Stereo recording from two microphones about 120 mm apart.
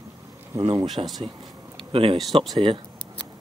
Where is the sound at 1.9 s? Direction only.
50° right (ahead or behind).